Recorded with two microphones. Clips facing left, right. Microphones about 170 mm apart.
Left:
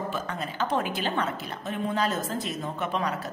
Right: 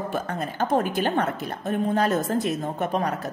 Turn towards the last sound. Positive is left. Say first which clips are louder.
# right 4 dB
turn(degrees=-45)  # may be behind; listen again after turning